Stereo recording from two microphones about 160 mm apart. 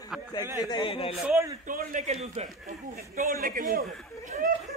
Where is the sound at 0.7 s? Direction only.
35° left (ahead or behind).